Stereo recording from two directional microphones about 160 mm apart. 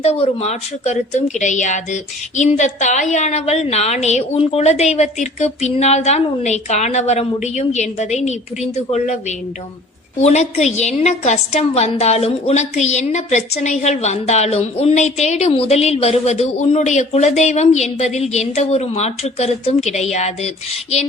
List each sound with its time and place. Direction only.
0.0 s a woman's voice: 40° left (ahead or behind)
10.2 s a woman's voice: 45° left (ahead or behind)